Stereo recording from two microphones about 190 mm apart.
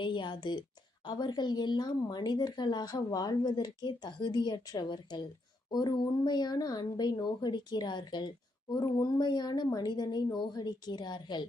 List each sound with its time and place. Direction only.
0.0 s a woman's voice: 25° left (ahead or behind)